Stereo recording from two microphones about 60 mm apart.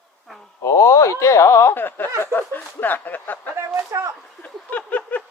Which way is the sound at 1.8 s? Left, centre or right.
Left.